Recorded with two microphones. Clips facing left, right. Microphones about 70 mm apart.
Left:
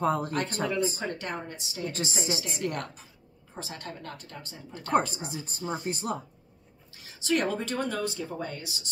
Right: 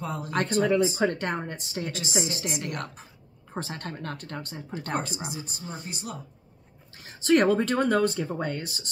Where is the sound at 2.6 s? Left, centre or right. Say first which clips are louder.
Left 2 dB; right.